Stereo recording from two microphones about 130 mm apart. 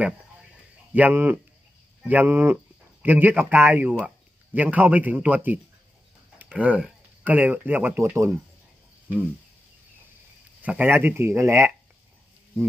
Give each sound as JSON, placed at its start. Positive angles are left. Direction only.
{"t": 0.9, "sound": "speech", "side_deg": -15}
{"t": 10.6, "sound": "speech", "side_deg": -15}